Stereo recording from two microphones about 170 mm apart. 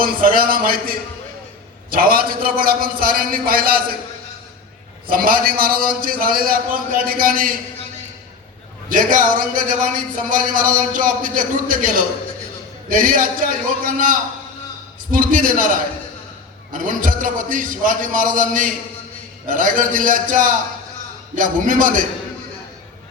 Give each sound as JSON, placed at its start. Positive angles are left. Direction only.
{"t": 0.0, "sound": "a man's voice", "side_deg": -55}
{"t": 5.0, "sound": "a man's voice", "side_deg": -55}
{"t": 8.9, "sound": "speech", "side_deg": -50}